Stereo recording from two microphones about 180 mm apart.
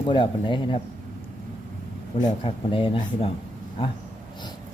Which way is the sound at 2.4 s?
30° left (ahead or behind).